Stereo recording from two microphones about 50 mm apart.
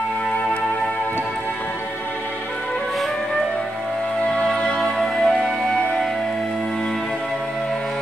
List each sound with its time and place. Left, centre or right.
4.3 s music: centre
5.7 s music: left